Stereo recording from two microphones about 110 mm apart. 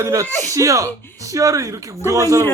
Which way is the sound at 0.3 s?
20° left (ahead or behind).